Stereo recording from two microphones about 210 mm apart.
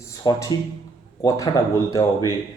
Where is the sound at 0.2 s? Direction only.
20° left (ahead or behind).